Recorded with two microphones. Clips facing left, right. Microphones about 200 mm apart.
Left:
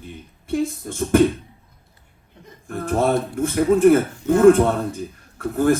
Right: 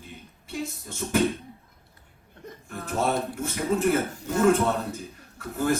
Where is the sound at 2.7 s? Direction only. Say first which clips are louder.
Left 7 dB; 55° left (ahead or behind).